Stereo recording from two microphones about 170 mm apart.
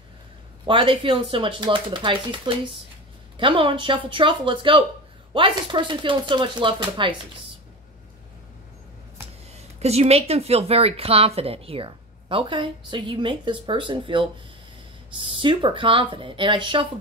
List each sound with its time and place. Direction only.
0.7 s speech: 30° right (ahead or behind)
9.8 s speech: 40° right (ahead or behind)